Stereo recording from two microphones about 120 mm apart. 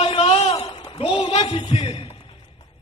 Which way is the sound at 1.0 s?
50° left (ahead or behind).